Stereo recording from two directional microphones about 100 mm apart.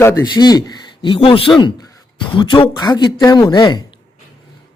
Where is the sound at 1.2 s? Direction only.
65° left (ahead or behind); by 3.8 s 45° left (ahead or behind).